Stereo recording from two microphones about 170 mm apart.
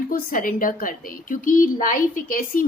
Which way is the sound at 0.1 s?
50° left (ahead or behind).